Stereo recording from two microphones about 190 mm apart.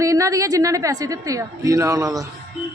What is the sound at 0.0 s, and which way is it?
A man's voice, 15° right (ahead or behind).